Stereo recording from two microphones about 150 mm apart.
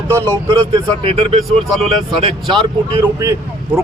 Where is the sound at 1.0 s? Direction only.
40° right (ahead or behind).